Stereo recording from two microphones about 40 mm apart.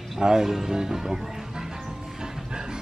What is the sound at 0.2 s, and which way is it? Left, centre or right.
Speech, centre.